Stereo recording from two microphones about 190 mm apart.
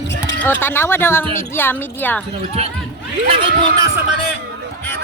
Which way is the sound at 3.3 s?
25° right (ahead or behind).